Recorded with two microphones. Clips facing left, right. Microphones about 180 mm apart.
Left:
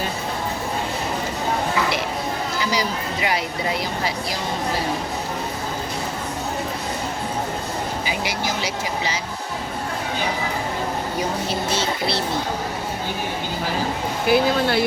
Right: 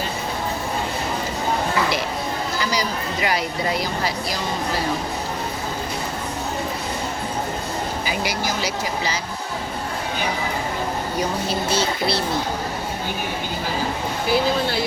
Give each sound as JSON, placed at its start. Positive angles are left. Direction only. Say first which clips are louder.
{"t": 8.0, "sound": "speech", "louder": "right 1 dB", "side_deg": 20}
{"t": 14.3, "sound": "speech", "louder": "left 3 dB", "side_deg": 60}